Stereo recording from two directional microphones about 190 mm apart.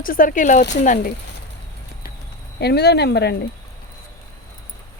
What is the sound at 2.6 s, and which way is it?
Speech, 60° left (ahead or behind).